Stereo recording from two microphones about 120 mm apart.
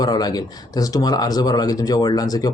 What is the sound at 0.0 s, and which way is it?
Speech, 35° left (ahead or behind).